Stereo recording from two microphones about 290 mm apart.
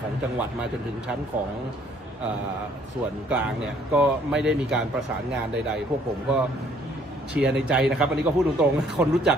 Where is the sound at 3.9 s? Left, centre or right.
Centre.